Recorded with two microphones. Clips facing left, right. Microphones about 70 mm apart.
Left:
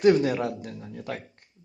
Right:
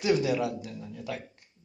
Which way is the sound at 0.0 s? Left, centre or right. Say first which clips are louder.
Left 5 dB; left.